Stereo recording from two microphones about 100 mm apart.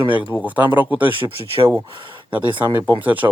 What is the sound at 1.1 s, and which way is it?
Speech, 55° right (ahead or behind).